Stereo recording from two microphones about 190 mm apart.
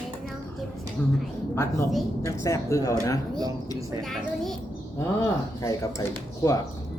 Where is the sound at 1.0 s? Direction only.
10° left (ahead or behind).